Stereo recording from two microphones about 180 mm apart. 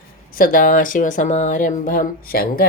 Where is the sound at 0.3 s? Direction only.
50° left (ahead or behind).